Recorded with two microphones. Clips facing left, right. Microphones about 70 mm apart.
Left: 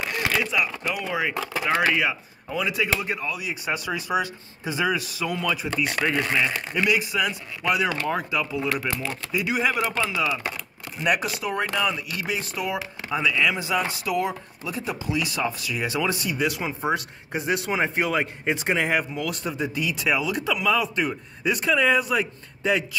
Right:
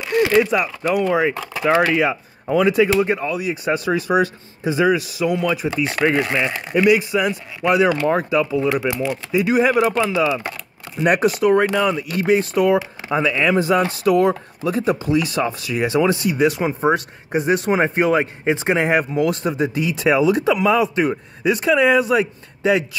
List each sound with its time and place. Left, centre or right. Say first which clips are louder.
0.4 s speech: right 8 dB; right
1.9 s speech: right 5 dB; right
2.4 s speech: right 11 dB; right; by 7.0 s centre
7.0 s speech: right 6 dB; right
8.1 s speech: right 8 dB; right; by 9.4 s centre
9.4 s speech: right 8 dB; right
9.8 s speech: right 8 dB; centre
11.0 s speech: right 8 dB; right
11.7 s speech: right 7 dB; right
15.4 s speech: right 6 dB; right